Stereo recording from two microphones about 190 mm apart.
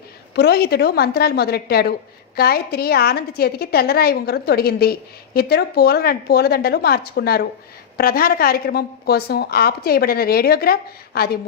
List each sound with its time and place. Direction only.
0.3 s a woman's voice: 60° left (ahead or behind)